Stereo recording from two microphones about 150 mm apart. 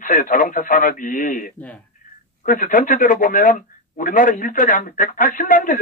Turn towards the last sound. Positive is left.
turn(degrees=65)  # may be behind; listen again after turning